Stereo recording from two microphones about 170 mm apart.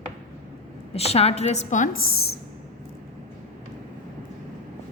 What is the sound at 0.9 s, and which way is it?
A woman's voice, 35° left (ahead or behind).